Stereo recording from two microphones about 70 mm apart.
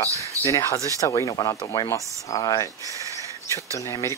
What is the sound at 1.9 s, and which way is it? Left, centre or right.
Speech, left.